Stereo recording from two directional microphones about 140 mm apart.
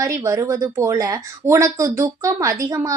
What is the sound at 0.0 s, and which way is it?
Speech, 20° right (ahead or behind).